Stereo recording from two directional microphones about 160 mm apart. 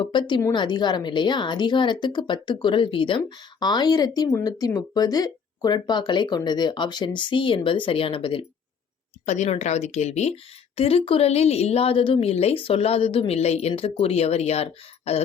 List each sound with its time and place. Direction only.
0.0 s a woman's voice: 30° left (ahead or behind)
9.2 s a woman's voice: 45° left (ahead or behind)